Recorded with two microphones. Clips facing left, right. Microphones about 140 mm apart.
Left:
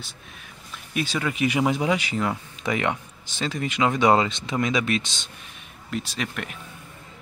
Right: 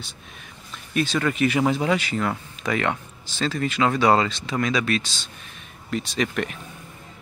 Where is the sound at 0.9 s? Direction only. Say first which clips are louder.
Right 4 dB; 10° left (ahead or behind).